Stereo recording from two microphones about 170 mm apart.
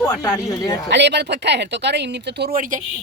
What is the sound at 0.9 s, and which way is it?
Speech, 90° right.